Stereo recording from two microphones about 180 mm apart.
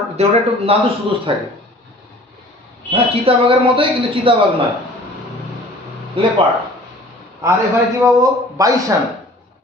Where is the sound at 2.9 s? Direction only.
35° right (ahead or behind).